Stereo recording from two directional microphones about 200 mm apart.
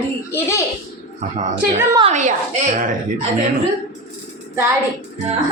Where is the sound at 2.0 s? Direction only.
35° right (ahead or behind).